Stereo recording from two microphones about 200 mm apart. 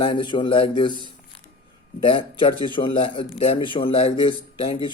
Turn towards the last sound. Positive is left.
turn(degrees=25)  # may be behind; listen again after turning